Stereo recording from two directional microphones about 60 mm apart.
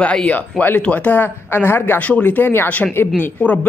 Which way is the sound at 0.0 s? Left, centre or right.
Centre.